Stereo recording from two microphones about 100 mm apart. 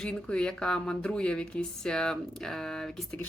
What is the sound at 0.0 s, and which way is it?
Speech, 10° left (ahead or behind).